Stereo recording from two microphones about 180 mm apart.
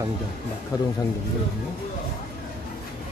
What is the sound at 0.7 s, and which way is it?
Speech, 20° left (ahead or behind).